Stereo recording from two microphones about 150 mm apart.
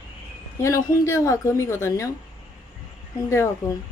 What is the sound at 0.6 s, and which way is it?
A woman's voice, 20° left (ahead or behind).